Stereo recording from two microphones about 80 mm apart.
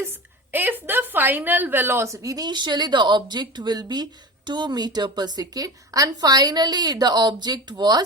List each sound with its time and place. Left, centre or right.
0.5 s a woman's voice: right
2.2 s a woman's voice: right